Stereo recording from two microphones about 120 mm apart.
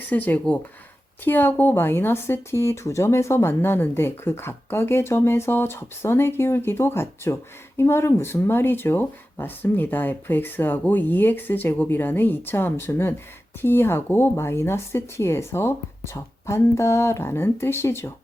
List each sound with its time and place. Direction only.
0.1 s a woman's voice: 15° left (ahead or behind)